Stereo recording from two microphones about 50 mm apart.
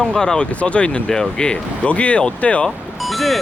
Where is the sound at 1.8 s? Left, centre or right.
Left.